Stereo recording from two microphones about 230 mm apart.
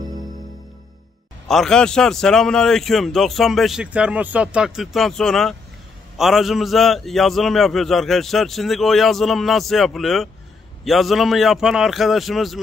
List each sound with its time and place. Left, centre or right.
0.0 s music: centre
1.5 s a man's voice: centre